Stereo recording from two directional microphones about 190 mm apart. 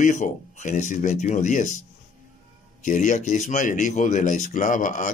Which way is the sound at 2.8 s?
40° left (ahead or behind).